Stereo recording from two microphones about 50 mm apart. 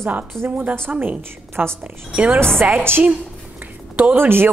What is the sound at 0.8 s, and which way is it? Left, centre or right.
Speech, right.